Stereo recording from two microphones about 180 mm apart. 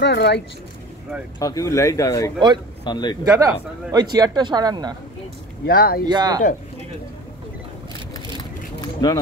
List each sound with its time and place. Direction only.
0.0 s speech: 70° left (ahead or behind)
1.4 s speech: 20° left (ahead or behind)
3.3 s speech: 20° right (ahead or behind)
5.7 s speech: 55° left (ahead or behind)
6.0 s speech: 25° right (ahead or behind)
8.8 s a sound: 20° left (ahead or behind)